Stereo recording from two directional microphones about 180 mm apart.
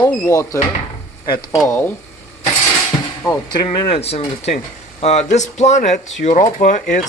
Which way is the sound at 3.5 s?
25° left (ahead or behind).